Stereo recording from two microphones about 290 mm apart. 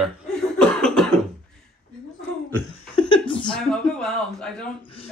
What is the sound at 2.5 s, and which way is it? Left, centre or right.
Laughter, centre.